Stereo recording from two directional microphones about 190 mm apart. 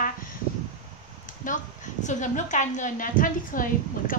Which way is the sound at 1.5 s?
45° left (ahead or behind).